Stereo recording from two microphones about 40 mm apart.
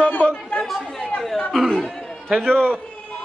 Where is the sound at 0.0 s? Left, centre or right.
Left.